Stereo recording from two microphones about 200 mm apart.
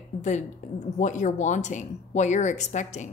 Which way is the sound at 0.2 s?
35° left (ahead or behind).